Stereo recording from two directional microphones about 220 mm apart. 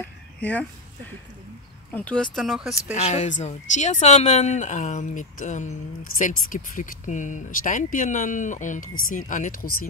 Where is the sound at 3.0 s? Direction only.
35° left (ahead or behind).